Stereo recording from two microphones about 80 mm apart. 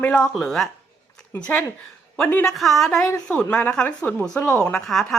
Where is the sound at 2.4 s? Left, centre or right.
Centre; by 4.6 s left.